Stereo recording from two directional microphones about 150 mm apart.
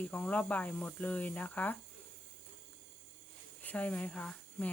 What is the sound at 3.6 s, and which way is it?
Speech, 10° left (ahead or behind).